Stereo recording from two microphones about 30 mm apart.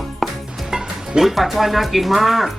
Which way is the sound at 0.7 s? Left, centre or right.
Right.